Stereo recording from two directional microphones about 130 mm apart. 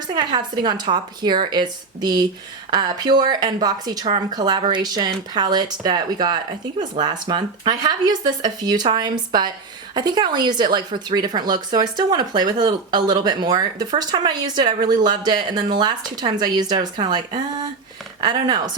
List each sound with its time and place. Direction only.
0.2 s a woman's voice: 35° right (ahead or behind)